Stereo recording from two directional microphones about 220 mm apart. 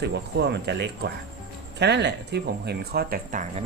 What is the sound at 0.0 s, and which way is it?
Speech, 50° right (ahead or behind).